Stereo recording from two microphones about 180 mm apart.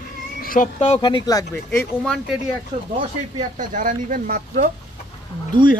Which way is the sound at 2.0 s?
5° left (ahead or behind).